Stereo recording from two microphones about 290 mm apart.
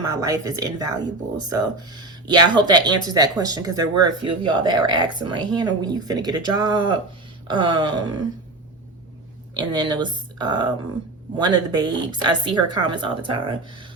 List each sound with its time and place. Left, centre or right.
0.0 s speech: centre
9.6 s speech: centre